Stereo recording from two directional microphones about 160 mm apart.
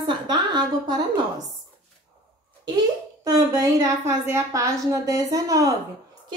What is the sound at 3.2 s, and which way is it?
A woman's voice, 20° right (ahead or behind).